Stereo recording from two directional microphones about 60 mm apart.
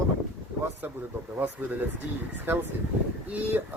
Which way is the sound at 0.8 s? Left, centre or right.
Right.